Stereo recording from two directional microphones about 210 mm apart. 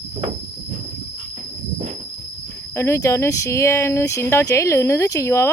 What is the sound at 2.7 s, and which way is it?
Speech, 15° left (ahead or behind).